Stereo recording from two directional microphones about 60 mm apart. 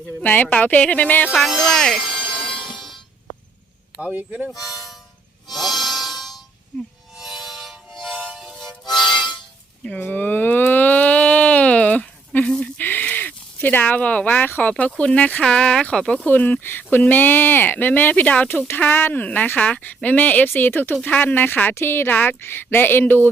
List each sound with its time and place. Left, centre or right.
0.2 s speech: left
1.3 s music: centre
3.9 s speech: right
4.5 s harmonica: left
5.5 s music: centre
10.0 s a sound: left
12.8 s a sound: left
14.7 s speech: left
16.2 s speech: left
20.9 s speech: left